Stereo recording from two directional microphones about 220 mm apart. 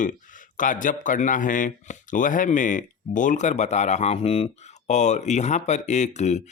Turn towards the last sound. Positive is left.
turn(degrees=30)  # may be behind; listen again after turning